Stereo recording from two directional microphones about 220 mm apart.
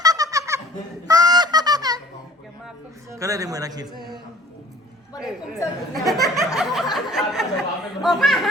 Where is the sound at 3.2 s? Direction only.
15° right (ahead or behind).